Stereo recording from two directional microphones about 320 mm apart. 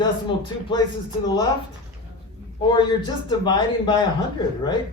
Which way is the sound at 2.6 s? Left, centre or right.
Centre.